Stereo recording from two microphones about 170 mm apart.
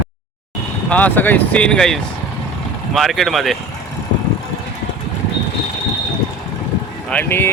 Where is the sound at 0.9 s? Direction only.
10° left (ahead or behind).